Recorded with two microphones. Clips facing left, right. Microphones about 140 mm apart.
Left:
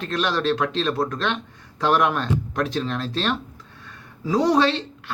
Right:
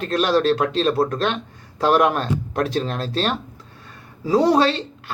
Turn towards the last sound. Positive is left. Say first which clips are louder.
# right 1 dB
turn(degrees=-30)  # may be behind; listen again after turning